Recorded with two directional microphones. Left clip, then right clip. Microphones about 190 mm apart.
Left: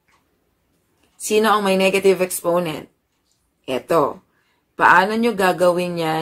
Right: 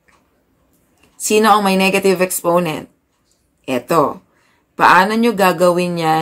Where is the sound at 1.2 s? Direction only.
15° right (ahead or behind).